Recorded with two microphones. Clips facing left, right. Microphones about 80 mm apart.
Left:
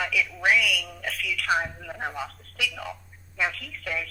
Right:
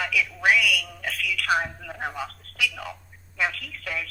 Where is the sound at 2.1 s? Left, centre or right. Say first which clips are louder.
Right 1 dB; left.